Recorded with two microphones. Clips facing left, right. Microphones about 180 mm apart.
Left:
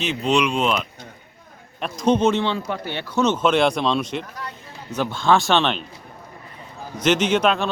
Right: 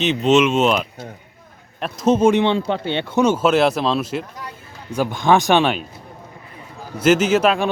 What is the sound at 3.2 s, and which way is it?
Speech, 10° right (ahead or behind).